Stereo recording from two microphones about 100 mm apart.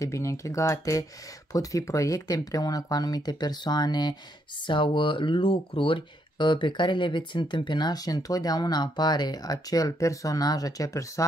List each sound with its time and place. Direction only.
0.0 s speech: 30° left (ahead or behind)